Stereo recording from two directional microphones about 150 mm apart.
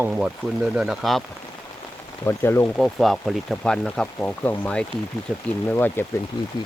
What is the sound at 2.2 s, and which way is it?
Speech, 15° left (ahead or behind).